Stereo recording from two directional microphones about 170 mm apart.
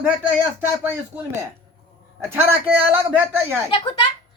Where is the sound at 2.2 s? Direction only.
15° right (ahead or behind).